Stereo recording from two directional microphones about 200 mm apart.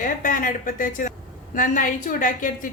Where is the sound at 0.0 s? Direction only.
40° left (ahead or behind).